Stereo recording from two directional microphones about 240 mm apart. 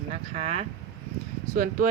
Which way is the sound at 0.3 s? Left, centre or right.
Right.